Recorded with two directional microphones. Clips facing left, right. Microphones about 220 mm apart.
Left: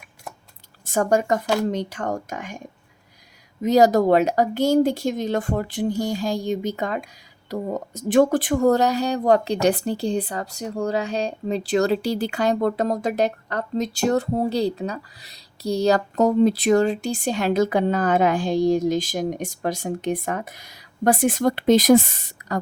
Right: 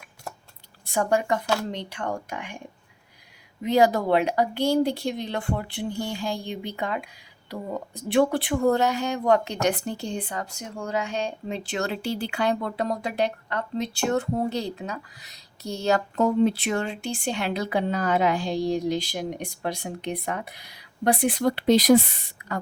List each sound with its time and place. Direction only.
0.9 s speech: 45° left (ahead or behind)
3.6 s speech: 40° left (ahead or behind)